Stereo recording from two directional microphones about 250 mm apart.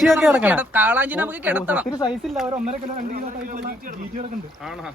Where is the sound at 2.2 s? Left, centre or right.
Centre.